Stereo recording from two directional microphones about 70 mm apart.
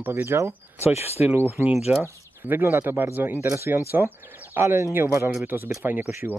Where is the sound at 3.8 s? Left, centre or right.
Right.